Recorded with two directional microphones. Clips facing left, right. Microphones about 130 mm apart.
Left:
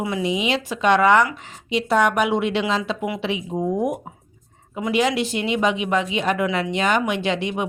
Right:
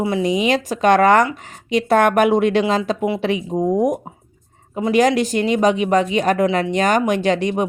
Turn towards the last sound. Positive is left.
turn(degrees=-40)  # may be behind; listen again after turning